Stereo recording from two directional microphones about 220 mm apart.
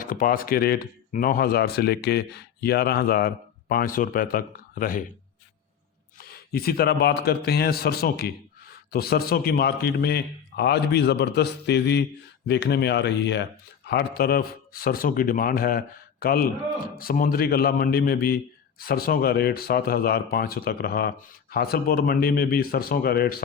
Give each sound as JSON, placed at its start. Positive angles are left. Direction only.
{"t": 0.0, "sound": "speech", "side_deg": 40}
{"t": 6.1, "sound": "speech", "side_deg": 45}